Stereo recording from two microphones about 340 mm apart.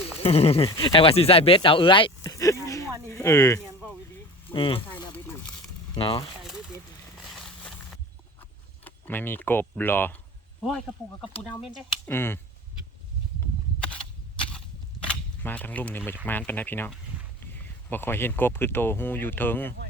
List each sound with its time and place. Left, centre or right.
0.2 s speech: centre
4.4 s a sound: centre
5.9 s speech: centre
7.3 s a sound: centre
8.8 s speech: centre
15.4 s speech: centre